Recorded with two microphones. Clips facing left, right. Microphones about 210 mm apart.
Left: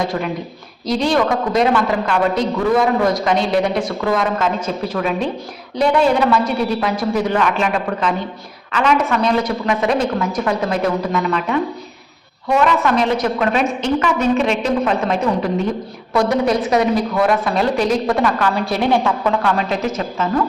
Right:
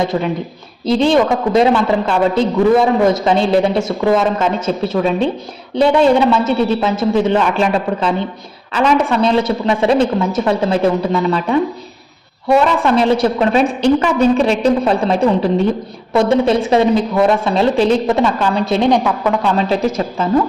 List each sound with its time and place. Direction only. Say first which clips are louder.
0.0 s a woman's voice: right 4 dB; 25° right (ahead or behind)
8.7 s a woman's voice: right 3 dB; 30° right (ahead or behind)